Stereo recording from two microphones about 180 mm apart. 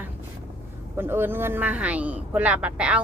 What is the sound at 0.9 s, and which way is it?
A woman's voice, 10° right (ahead or behind).